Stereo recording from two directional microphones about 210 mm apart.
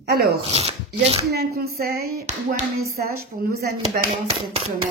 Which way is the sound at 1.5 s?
45° right (ahead or behind).